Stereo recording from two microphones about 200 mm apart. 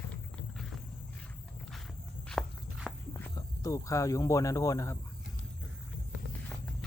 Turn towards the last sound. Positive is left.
turn(degrees=15)  # may be behind; listen again after turning